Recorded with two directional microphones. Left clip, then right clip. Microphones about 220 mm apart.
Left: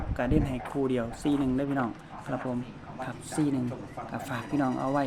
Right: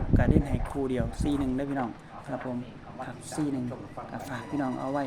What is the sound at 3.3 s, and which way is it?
Speech, 20° left (ahead or behind).